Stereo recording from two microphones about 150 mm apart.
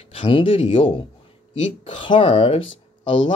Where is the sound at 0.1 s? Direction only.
35° left (ahead or behind).